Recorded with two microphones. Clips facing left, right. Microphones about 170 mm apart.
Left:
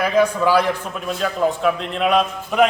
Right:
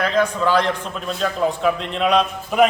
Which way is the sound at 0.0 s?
10° left (ahead or behind).